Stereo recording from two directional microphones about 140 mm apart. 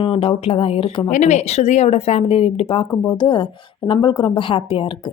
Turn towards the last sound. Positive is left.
turn(degrees=35)  # may be behind; listen again after turning